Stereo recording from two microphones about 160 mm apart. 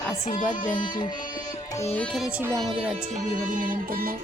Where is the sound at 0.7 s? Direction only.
30° left (ahead or behind).